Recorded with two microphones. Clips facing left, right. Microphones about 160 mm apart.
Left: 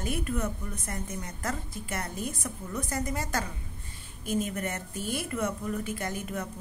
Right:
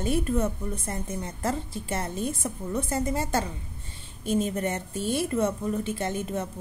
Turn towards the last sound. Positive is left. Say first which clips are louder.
# right 5 dB
turn(degrees=-25)  # may be behind; listen again after turning